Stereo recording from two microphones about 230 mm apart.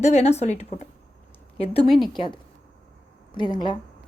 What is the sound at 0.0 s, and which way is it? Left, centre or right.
A woman's voice, left.